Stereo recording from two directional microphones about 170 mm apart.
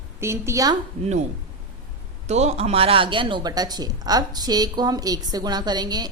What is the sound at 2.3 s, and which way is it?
A woman's voice, 40° right (ahead or behind).